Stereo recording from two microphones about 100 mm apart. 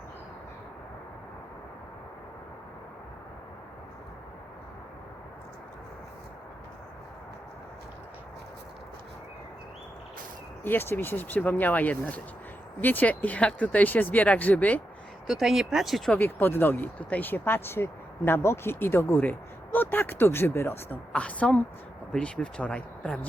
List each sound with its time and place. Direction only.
10.6 s speech: 20° left (ahead or behind)
15.3 s speech: 5° right (ahead or behind)
16.0 s speech: 20° left (ahead or behind)
21.1 s speech: 15° left (ahead or behind)